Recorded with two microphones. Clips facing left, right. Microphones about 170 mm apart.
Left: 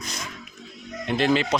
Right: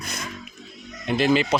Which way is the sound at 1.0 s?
5° right (ahead or behind).